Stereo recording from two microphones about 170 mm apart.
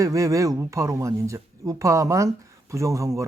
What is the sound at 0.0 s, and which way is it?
Speech, 20° right (ahead or behind).